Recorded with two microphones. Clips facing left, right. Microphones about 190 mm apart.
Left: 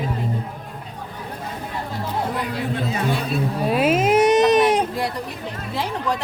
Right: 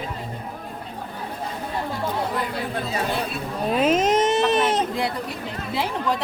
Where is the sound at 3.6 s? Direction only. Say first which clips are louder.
Even; 5° left (ahead or behind).